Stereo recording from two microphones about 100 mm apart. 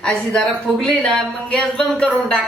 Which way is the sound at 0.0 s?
5° left (ahead or behind).